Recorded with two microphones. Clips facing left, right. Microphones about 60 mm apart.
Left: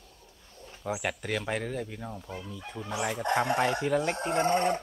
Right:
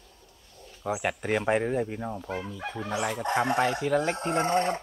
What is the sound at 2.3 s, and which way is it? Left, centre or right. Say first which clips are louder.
Speech: right 6 dB; right.